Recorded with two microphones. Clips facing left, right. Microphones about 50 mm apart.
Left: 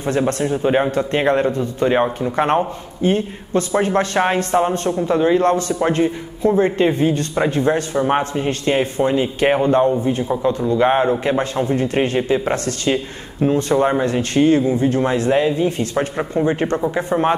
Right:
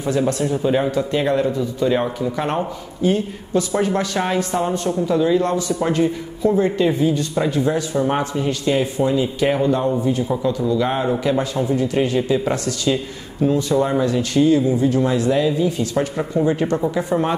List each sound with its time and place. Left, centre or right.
0.3 s a man's voice: left
8.0 s a man's voice: left